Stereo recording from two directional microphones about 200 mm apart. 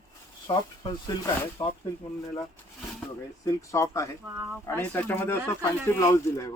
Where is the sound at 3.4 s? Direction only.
15° left (ahead or behind).